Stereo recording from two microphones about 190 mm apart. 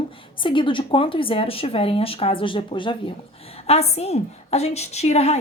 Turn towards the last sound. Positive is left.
turn(degrees=35)  # may be behind; listen again after turning